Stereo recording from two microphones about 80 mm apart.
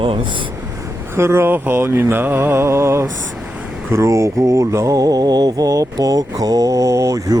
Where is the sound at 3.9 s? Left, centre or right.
Right.